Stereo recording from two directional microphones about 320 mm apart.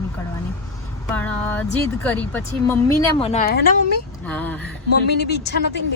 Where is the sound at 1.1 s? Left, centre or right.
Centre; by 3.7 s left.